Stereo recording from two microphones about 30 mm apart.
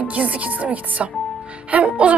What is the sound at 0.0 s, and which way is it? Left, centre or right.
Speech, right.